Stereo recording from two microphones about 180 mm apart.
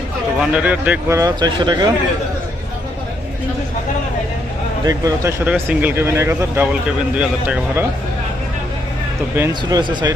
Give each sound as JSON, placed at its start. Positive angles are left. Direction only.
{"t": 0.3, "sound": "speech", "side_deg": -5}
{"t": 4.9, "sound": "speech", "side_deg": -20}
{"t": 9.5, "sound": "speech", "side_deg": -20}